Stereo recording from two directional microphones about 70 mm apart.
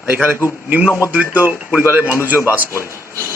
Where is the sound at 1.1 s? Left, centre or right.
Right.